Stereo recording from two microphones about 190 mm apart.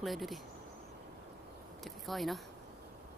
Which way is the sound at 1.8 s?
Centre (ahead or behind).